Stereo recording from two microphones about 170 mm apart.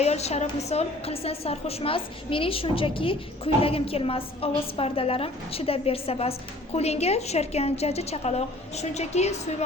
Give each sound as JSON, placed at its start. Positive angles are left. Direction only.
{"t": 0.0, "sound": "a woman's voice", "side_deg": 40}